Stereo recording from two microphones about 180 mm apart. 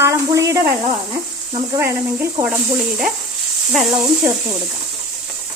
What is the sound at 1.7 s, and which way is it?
Speech, 15° right (ahead or behind).